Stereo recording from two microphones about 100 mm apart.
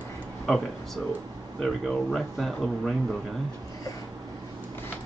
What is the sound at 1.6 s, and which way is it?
Speech, centre (ahead or behind).